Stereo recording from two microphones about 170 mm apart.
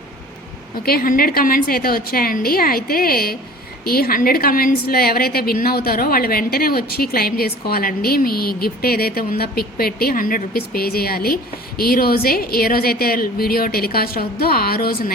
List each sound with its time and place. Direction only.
0.9 s a woman's voice: 60° left (ahead or behind)